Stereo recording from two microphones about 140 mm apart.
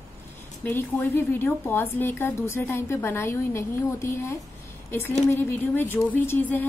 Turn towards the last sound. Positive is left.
turn(degrees=15)  # may be behind; listen again after turning